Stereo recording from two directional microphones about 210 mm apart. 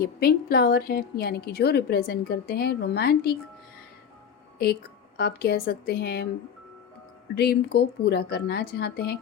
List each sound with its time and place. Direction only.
0.0 s speech: 45° left (ahead or behind)
4.5 s a woman's voice: 45° left (ahead or behind)
7.3 s speech: 50° left (ahead or behind)